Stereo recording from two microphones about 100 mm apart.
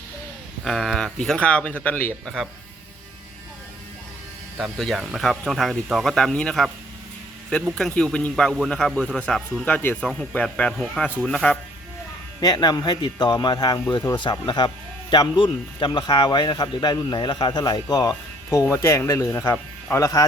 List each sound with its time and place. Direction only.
0.6 s speech: 5° left (ahead or behind)
4.5 s speech: centre (ahead or behind)
7.8 s speech: 5° left (ahead or behind)
12.4 s a man's voice: 40° left (ahead or behind)
18.6 s speech: 30° left (ahead or behind)